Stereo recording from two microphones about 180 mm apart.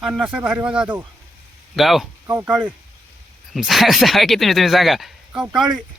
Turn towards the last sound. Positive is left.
turn(degrees=0)  # may be behind; listen again after turning